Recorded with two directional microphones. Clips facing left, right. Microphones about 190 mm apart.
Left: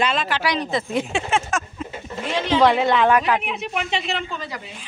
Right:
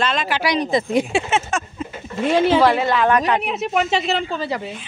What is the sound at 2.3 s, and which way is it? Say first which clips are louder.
Speech: right 6 dB; 50° right (ahead or behind).